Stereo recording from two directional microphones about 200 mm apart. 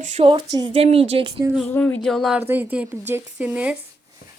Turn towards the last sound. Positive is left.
turn(degrees=-5)  # may be behind; listen again after turning